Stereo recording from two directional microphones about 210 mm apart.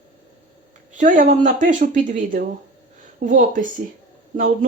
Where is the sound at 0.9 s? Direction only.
35° right (ahead or behind).